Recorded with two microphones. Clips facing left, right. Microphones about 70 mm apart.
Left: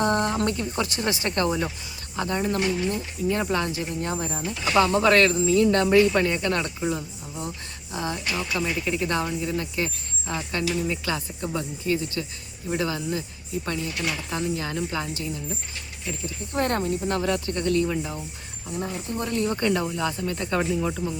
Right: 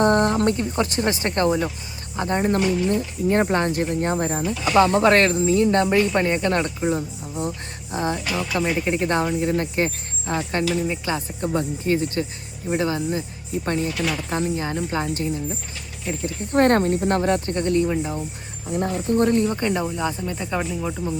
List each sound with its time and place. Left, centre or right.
0.0 s speech: right
1.5 s speech: centre
2.1 s speech: right
13.7 s speech: right; by 18.2 s centre
18.9 s speech: right
19.3 s speech: right
20.3 s speech: centre